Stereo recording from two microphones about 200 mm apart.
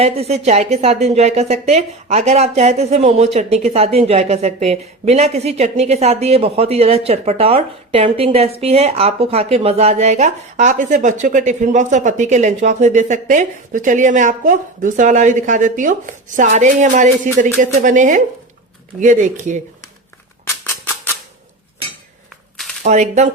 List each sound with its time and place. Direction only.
0.0 s speech: 30° right (ahead or behind)
20.7 s a sound: 10° left (ahead or behind)
22.8 s speech: 35° right (ahead or behind)